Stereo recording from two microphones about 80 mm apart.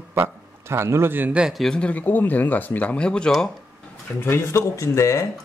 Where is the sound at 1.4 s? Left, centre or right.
Centre.